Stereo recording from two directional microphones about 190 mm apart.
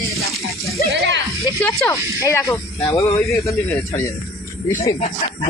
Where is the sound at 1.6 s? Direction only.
15° left (ahead or behind).